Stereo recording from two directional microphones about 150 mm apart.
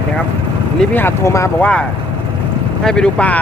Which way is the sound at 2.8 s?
5° left (ahead or behind).